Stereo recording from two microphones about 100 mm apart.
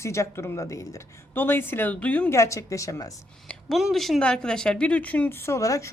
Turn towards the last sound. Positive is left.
turn(degrees=35)  # may be behind; listen again after turning